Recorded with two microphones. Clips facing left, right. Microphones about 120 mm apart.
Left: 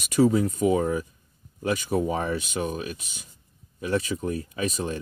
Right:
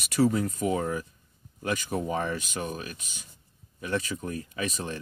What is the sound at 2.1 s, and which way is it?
Speech, 35° left (ahead or behind).